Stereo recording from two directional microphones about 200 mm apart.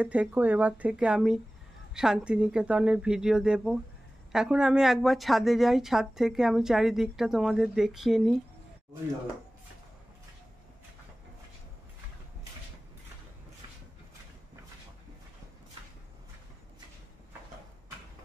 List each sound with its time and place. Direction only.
0.0 s a woman's voice: 5° right (ahead or behind)